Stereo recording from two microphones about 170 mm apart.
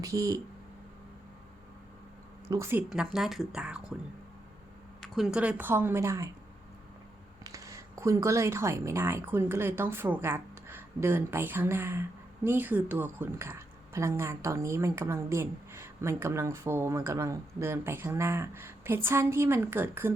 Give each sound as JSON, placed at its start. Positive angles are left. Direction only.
{"t": 0.0, "sound": "speech", "side_deg": -20}
{"t": 2.5, "sound": "a woman's voice", "side_deg": -15}
{"t": 2.9, "sound": "speech", "side_deg": -5}
{"t": 5.0, "sound": "a woman's voice", "side_deg": 0}
{"t": 7.4, "sound": "a woman's voice", "side_deg": -20}